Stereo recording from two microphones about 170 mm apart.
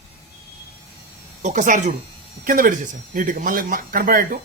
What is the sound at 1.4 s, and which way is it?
A man's voice, 45° right (ahead or behind).